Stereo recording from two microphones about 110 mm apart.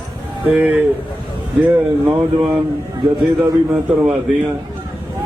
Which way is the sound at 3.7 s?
10° right (ahead or behind).